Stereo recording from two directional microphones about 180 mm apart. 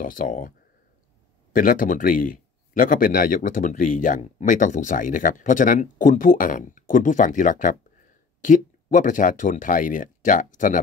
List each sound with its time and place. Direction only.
0.0 s a man's voice: 50° left (ahead or behind)
1.5 s a man's voice: 50° left (ahead or behind)